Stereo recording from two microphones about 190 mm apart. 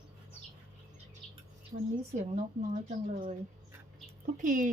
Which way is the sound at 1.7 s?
40° right (ahead or behind).